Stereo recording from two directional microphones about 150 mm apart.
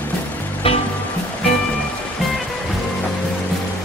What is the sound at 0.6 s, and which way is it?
Music, 40° left (ahead or behind).